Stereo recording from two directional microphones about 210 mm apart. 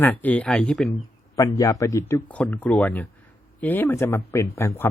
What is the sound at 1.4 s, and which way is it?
Speech, 15° left (ahead or behind).